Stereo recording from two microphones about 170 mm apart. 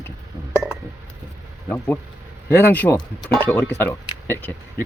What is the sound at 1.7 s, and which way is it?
Speech, 15° left (ahead or behind).